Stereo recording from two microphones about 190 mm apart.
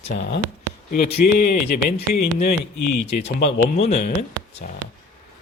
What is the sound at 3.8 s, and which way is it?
Speech, 35° left (ahead or behind).